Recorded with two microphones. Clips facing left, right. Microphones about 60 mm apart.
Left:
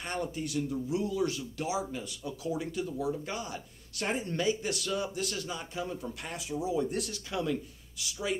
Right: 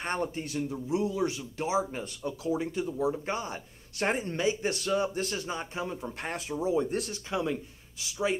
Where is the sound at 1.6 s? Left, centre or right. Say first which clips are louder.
Right 5 dB; right.